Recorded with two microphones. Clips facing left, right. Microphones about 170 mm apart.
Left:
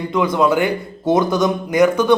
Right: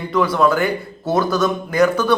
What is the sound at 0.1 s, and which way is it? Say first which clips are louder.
A man's voice: even; 20° left (ahead or behind).